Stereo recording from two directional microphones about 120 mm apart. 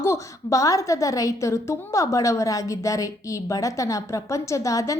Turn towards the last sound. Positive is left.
turn(degrees=30)  # may be behind; listen again after turning